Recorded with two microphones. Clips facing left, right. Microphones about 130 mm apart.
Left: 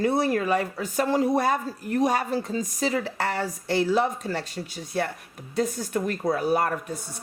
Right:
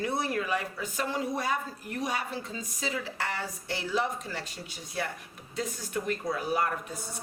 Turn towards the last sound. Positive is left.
turn(degrees=45)  # may be behind; listen again after turning